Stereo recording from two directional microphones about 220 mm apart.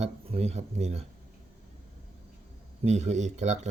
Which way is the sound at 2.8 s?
30° right (ahead or behind).